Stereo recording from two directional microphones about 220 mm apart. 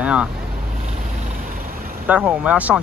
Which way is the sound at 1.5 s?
40° right (ahead or behind).